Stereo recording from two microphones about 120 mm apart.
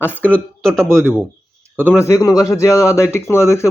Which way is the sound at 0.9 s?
20° right (ahead or behind).